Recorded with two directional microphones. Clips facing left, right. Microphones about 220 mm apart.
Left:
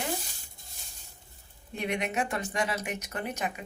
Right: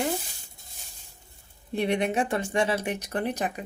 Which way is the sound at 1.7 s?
30° right (ahead or behind).